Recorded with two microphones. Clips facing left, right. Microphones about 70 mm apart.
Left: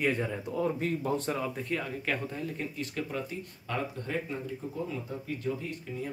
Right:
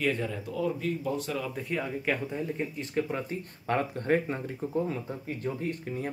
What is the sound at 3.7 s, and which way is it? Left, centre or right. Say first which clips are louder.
Speech: right 7 dB; right.